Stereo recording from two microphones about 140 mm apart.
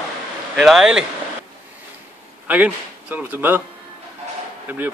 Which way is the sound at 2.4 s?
10° right (ahead or behind).